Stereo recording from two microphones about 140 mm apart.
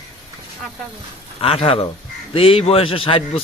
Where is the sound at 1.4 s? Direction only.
40° left (ahead or behind).